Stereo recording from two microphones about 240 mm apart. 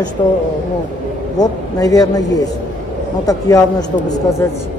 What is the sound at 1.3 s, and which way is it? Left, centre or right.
Speech, centre.